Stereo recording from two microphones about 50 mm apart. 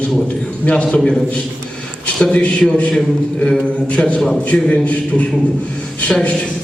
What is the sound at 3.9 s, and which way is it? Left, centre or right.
A man's voice, left.